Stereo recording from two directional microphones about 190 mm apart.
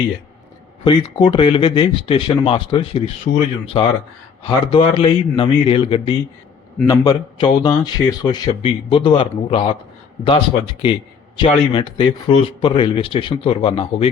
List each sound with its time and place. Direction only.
0.9 s speech: 25° left (ahead or behind)